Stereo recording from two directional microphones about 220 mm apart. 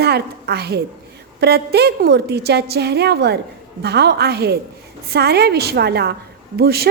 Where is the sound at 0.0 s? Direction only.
45° right (ahead or behind).